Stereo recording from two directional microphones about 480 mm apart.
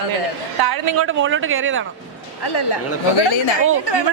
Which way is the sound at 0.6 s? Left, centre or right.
Right.